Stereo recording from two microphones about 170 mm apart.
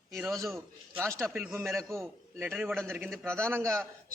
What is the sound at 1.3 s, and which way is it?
A man's voice, 5° right (ahead or behind).